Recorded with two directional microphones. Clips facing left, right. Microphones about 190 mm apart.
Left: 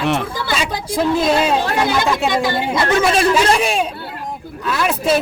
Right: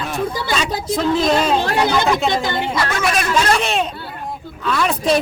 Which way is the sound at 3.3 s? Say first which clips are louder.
Left 2 dB; 10° left (ahead or behind).